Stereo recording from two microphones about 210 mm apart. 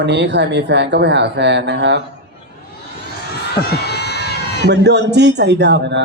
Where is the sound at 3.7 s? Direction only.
50° left (ahead or behind).